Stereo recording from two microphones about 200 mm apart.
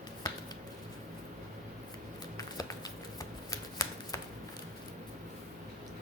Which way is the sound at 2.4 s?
20° left (ahead or behind).